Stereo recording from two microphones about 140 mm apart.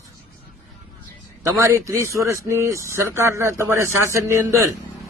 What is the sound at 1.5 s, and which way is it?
Speech, 20° right (ahead or behind).